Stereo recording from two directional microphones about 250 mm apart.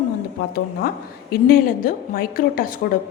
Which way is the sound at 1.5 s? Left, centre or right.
Left.